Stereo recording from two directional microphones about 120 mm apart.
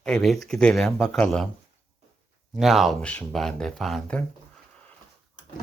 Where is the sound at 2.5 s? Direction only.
Centre (ahead or behind).